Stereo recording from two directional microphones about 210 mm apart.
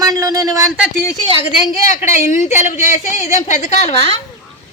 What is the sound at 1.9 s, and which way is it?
Speech, 35° left (ahead or behind).